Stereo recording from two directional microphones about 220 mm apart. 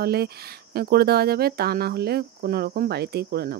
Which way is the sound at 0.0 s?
45° right (ahead or behind).